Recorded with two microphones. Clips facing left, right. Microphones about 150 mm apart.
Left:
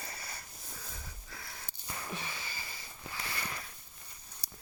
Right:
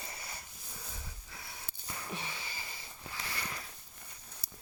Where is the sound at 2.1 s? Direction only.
20° right (ahead or behind).